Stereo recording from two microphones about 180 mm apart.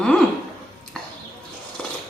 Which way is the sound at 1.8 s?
5° left (ahead or behind).